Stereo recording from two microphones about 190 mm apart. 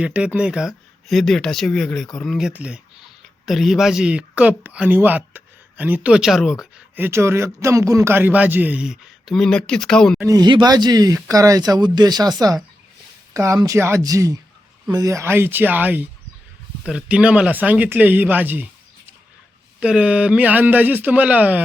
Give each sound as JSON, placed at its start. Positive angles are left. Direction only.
{"t": 0.0, "sound": "speech", "side_deg": -5}
{"t": 10.2, "sound": "speech", "side_deg": -20}
{"t": 19.8, "sound": "speech", "side_deg": -5}